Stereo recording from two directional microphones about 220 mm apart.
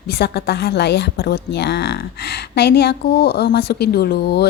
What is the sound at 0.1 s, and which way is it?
A woman's voice, 45° left (ahead or behind).